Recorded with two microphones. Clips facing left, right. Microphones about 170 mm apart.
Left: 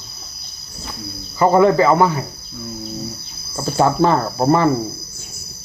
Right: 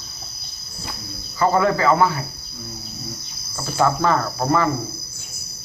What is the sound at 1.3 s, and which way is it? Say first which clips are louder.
Cricket: left 6 dB; 25° left (ahead or behind).